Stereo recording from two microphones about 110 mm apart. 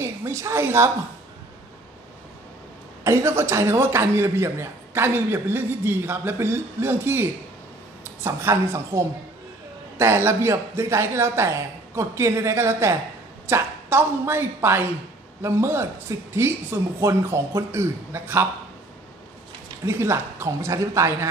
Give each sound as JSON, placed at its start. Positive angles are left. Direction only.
{"t": 0.0, "sound": "a woman's voice", "side_deg": -25}
{"t": 3.0, "sound": "a woman's voice", "side_deg": -25}
{"t": 19.8, "sound": "speech", "side_deg": -25}